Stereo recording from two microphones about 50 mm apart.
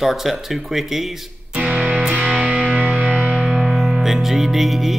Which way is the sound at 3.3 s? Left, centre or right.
Centre.